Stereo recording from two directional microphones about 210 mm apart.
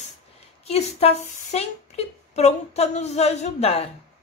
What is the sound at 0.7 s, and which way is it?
A woman's voice, 30° left (ahead or behind).